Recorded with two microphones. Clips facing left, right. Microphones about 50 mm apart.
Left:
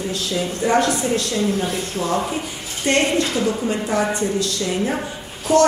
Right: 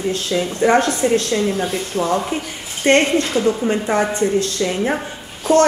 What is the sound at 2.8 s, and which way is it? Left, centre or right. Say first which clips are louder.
A woman's voice: right 4 dB; right.